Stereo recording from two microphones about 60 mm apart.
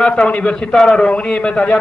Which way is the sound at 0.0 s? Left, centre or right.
Centre.